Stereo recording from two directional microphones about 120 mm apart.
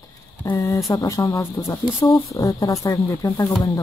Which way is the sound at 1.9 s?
40° left (ahead or behind).